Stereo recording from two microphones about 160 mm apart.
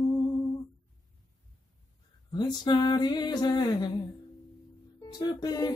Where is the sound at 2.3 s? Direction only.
25° left (ahead or behind).